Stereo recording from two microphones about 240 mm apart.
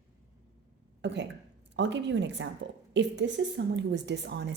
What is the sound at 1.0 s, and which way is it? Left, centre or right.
A woman's voice, right.